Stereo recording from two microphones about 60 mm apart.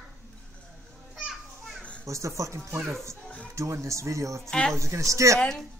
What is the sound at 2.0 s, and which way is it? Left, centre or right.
Speech, right.